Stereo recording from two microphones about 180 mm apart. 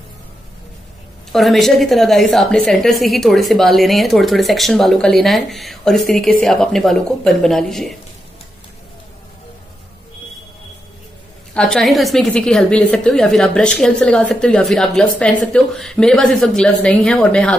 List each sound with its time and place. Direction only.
1.3 s a woman's voice: centre (ahead or behind)
11.5 s a woman's voice: centre (ahead or behind)